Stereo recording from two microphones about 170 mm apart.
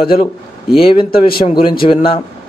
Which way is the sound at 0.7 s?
30° left (ahead or behind).